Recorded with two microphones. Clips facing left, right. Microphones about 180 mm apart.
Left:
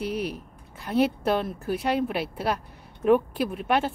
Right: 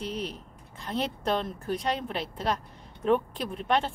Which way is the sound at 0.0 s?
10° left (ahead or behind).